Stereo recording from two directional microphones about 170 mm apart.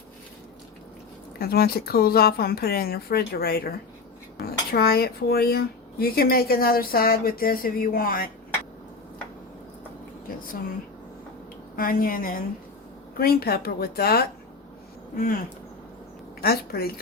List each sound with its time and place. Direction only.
1.4 s speech: 65° left (ahead or behind)
10.2 s a sound: 55° left (ahead or behind)
11.8 s speech: 55° left (ahead or behind)
16.4 s speech: 65° left (ahead or behind)